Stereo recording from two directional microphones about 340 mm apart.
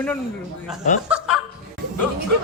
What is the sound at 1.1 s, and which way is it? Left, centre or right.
Snicker, centre.